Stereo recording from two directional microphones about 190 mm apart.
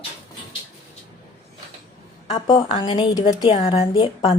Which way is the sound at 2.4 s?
20° left (ahead or behind).